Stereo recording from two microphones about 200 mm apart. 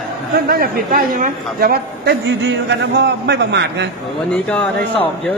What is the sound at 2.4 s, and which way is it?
A man's voice, 60° right (ahead or behind).